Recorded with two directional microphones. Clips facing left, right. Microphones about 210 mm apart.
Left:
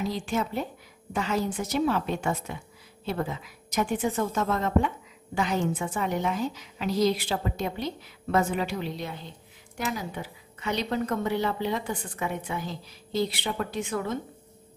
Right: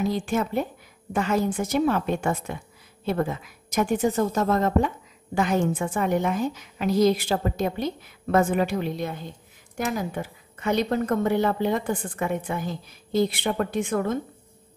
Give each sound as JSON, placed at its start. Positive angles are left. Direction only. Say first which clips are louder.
{"t": 0.0, "sound": "a woman's voice", "louder": "right 4 dB", "side_deg": -50}